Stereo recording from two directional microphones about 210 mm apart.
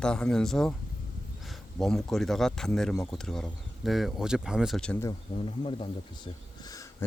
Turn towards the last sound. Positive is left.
turn(degrees=15)  # may be behind; listen again after turning